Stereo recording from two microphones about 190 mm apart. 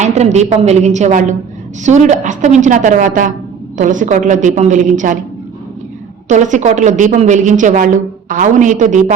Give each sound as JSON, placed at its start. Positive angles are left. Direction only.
{"t": 0.0, "sound": "a woman's voice", "side_deg": -40}
{"t": 6.2, "sound": "a woman's voice", "side_deg": -40}